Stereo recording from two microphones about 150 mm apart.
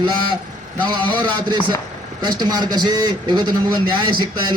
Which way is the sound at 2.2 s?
30° right (ahead or behind).